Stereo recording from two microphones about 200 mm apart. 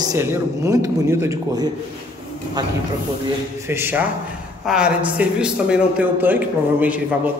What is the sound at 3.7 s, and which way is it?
A man's voice, 10° right (ahead or behind).